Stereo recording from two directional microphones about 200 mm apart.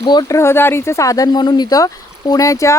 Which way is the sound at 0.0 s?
20° left (ahead or behind).